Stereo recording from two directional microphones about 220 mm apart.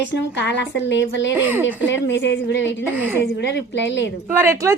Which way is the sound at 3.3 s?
50° left (ahead or behind).